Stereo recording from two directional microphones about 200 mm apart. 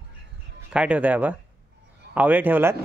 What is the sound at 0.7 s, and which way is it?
Speech, 5° right (ahead or behind).